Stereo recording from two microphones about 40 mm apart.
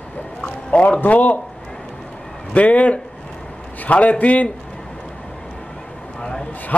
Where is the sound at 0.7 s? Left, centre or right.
Left.